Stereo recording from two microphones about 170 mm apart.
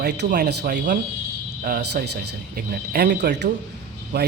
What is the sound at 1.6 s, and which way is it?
A man's voice, 60° right (ahead or behind).